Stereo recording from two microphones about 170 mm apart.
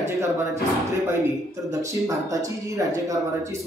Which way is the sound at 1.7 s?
20° right (ahead or behind).